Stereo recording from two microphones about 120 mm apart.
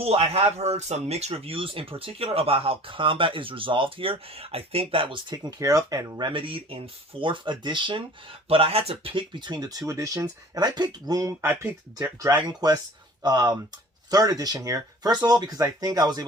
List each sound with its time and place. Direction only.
0.0 s speech: 55° right (ahead or behind)
5.3 s speech: 35° right (ahead or behind)
12.5 s speech: 35° right (ahead or behind)